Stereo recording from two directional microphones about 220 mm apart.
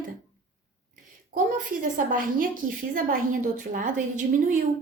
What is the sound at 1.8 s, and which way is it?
A woman's voice, 40° right (ahead or behind).